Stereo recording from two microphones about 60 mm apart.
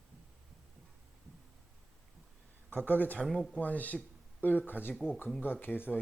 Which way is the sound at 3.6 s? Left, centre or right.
Left.